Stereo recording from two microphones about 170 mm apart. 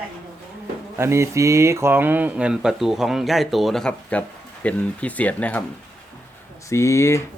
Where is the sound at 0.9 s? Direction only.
15° right (ahead or behind); by 5.6 s 10° left (ahead or behind).